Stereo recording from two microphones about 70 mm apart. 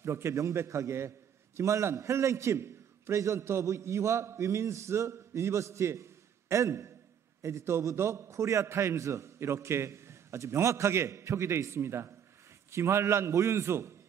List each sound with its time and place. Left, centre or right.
0.0 s a man's voice: right